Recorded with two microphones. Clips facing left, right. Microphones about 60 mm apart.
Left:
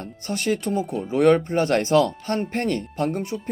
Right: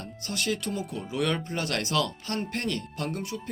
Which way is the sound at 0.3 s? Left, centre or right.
Left.